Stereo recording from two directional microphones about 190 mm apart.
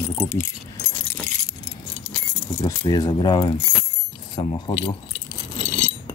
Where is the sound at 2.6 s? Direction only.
20° left (ahead or behind).